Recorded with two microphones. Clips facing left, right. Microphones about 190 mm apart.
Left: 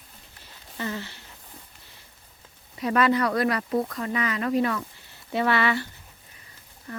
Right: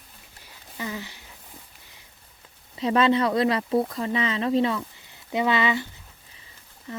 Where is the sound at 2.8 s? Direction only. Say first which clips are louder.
Right 2 dB; 25° right (ahead or behind).